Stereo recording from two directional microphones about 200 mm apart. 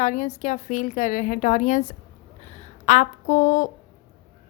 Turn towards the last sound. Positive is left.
turn(degrees=40)  # may be behind; listen again after turning